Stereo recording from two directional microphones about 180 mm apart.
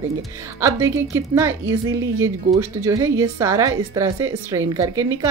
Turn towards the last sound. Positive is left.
turn(degrees=-20)  # may be behind; listen again after turning